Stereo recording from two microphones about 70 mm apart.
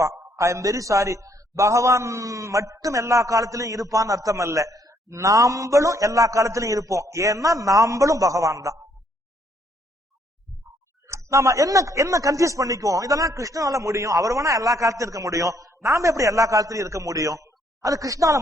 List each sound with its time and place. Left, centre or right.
0.3 s speech: right
5.0 s speech: right
11.0 s speech: right